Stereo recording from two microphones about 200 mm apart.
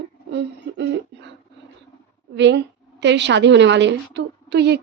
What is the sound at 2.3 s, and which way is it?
A woman's voice, 60° right (ahead or behind).